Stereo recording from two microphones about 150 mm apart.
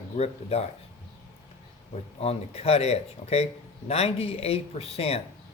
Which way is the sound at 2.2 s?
40° left (ahead or behind).